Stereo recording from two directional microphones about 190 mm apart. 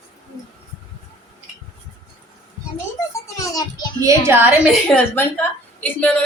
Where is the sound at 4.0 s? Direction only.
15° right (ahead or behind).